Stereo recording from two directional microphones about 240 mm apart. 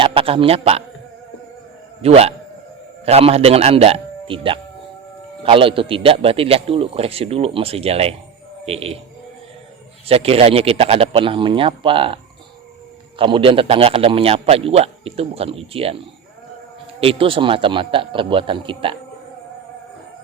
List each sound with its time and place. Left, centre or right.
0.0 s a man's voice: right
2.0 s a man's voice: right
10.1 s a man's voice: right
17.0 s a man's voice: right